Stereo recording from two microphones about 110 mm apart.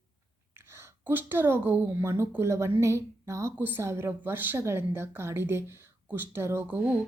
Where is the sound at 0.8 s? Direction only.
15° right (ahead or behind).